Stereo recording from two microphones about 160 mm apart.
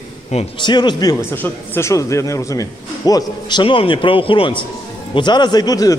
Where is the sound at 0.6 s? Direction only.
30° left (ahead or behind).